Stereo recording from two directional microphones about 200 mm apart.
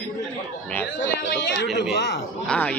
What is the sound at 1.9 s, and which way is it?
Speech, 60° left (ahead or behind).